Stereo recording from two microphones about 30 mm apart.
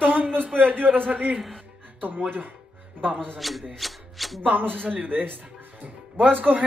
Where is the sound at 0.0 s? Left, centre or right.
Right.